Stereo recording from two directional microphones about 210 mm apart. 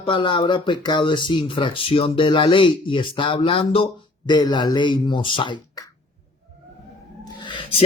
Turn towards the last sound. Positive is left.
turn(degrees=25)  # may be behind; listen again after turning